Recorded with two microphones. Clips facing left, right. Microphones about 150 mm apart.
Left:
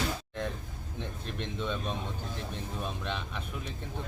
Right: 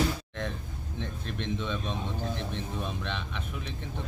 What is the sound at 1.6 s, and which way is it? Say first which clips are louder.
A man's voice: right 1 dB; 10° left (ahead or behind).